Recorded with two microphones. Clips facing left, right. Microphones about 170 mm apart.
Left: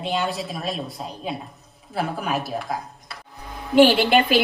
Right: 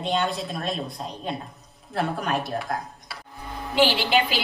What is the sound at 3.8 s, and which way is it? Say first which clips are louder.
Speech: left 6 dB; 50° left (ahead or behind).